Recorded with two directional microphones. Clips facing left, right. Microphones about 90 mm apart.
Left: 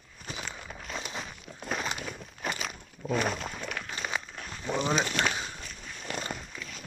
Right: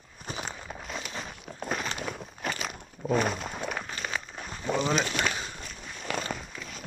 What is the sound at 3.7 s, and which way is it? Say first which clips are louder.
Run: right 3 dB; 20° right (ahead or behind).